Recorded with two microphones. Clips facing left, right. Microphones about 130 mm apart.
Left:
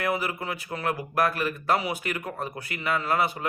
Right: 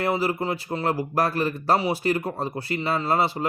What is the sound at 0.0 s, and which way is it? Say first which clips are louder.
Speech: right 4 dB; 30° right (ahead or behind).